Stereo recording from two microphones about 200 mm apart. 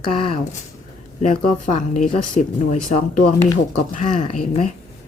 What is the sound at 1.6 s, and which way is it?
Speech, 40° left (ahead or behind).